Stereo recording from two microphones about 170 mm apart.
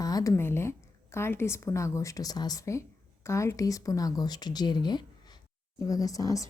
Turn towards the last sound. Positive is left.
turn(degrees=20)  # may be behind; listen again after turning